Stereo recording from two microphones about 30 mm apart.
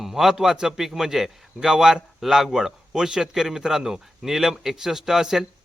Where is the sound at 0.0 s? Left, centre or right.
Centre.